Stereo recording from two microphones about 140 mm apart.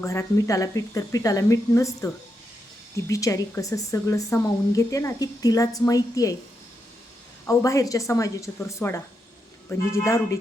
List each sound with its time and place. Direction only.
0.0 s a woman's voice: 20° left (ahead or behind)
3.1 s a woman's voice: 25° left (ahead or behind)
7.4 s a woman's voice: 25° left (ahead or behind)